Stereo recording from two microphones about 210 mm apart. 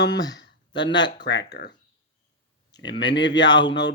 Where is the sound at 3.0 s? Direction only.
55° left (ahead or behind).